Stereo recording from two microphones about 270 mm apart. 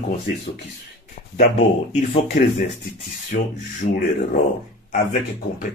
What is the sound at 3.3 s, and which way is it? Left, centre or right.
Speech, left.